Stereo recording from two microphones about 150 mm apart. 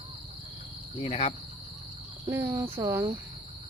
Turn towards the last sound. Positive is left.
turn(degrees=-20)  # may be behind; listen again after turning